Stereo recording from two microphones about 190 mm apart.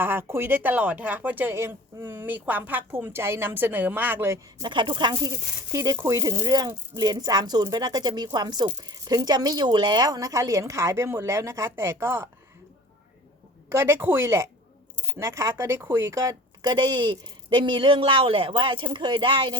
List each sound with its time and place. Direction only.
0.0 s speech: 10° right (ahead or behind)
13.7 s speech: 15° right (ahead or behind)